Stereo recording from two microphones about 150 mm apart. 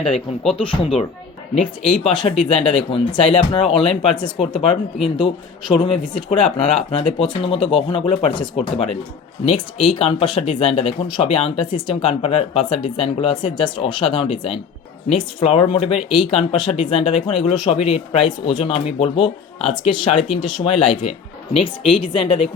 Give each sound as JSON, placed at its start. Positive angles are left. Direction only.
{"t": 0.5, "sound": "speech", "side_deg": 35}